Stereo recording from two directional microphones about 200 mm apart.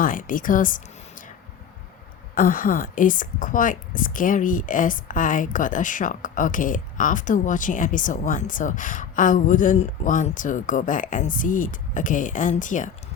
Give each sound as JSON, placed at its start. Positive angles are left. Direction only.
{"t": 0.0, "sound": "a woman's voice", "side_deg": 40}
{"t": 2.3, "sound": "a woman's voice", "side_deg": 45}